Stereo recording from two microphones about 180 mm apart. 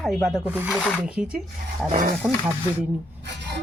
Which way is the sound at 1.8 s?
50° right (ahead or behind).